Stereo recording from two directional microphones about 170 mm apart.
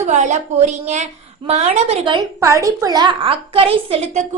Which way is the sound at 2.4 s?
20° right (ahead or behind).